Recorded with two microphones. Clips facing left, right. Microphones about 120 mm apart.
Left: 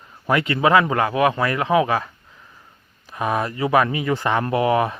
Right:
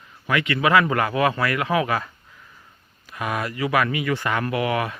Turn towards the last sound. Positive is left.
turn(degrees=30)  # may be behind; listen again after turning